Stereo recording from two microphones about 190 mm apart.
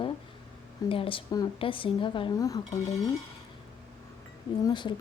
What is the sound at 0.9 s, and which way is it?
Speech, 30° left (ahead or behind).